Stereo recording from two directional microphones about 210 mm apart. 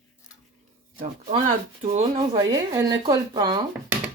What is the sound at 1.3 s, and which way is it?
Speech, 25° right (ahead or behind).